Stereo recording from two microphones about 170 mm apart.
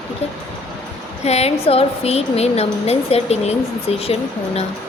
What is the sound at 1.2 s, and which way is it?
Speech, 40° left (ahead or behind).